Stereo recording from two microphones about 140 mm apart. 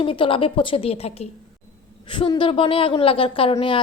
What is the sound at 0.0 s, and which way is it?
A woman's voice, 40° left (ahead or behind).